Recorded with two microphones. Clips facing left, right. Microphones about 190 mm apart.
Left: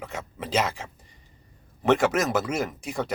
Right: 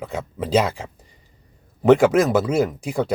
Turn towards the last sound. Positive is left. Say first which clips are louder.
# right 7 dB
turn(degrees=-30)  # may be behind; listen again after turning